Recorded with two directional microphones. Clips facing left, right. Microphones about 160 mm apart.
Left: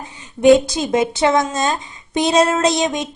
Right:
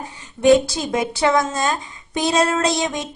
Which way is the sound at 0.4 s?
20° left (ahead or behind).